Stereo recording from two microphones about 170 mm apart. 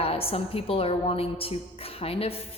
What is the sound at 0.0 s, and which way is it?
A woman's voice, 35° left (ahead or behind).